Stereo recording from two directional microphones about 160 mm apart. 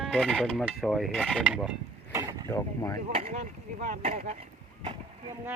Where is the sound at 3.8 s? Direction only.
45° right (ahead or behind).